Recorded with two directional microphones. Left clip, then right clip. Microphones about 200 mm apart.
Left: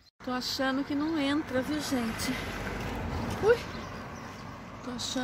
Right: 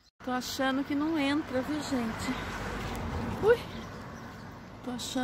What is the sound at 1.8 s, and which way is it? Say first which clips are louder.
Speech: left 1 dB; 40° right (ahead or behind).